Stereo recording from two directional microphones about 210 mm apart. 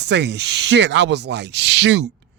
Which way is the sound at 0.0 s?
55° right (ahead or behind).